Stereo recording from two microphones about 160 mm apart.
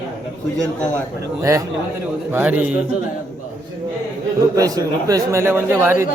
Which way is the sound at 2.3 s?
10° right (ahead or behind).